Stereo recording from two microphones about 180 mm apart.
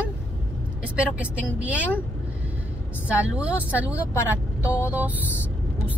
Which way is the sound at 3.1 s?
5° right (ahead or behind).